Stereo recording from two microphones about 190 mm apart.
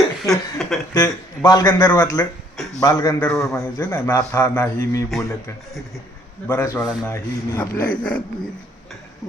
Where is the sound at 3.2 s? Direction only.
5° left (ahead or behind).